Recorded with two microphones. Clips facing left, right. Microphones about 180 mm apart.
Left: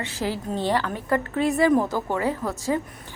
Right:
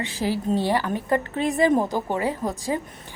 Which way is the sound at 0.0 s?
15° right (ahead or behind).